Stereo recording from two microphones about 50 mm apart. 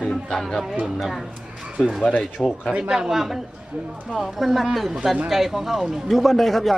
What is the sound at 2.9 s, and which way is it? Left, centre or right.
A man's voice, centre.